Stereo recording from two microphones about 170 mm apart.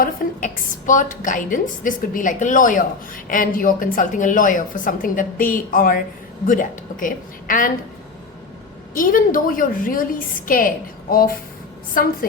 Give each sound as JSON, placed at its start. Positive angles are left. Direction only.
{"t": 0.0, "sound": "a woman's voice", "side_deg": 50}
{"t": 9.0, "sound": "a woman's voice", "side_deg": 55}